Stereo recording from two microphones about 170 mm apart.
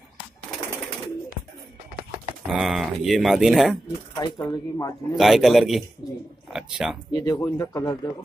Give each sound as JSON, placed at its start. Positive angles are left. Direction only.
{"t": 2.4, "sound": "speech", "side_deg": 0}
{"t": 4.1, "sound": "speech", "side_deg": 25}
{"t": 5.1, "sound": "speech", "side_deg": 0}
{"t": 7.2, "sound": "speech", "side_deg": 20}